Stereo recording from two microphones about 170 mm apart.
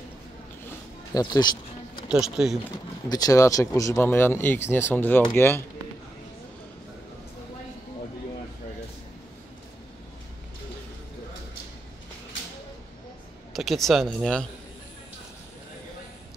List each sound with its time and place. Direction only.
1.1 s a sound: 25° left (ahead or behind)
2.0 s speech: 5° right (ahead or behind)
3.1 s speech: 20° left (ahead or behind)
13.5 s speech: centre (ahead or behind)